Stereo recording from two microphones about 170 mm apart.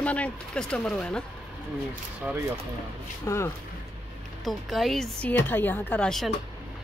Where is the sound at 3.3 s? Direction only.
15° left (ahead or behind).